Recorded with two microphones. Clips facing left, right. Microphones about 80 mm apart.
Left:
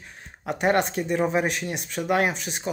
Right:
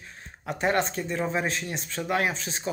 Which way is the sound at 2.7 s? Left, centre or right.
Left.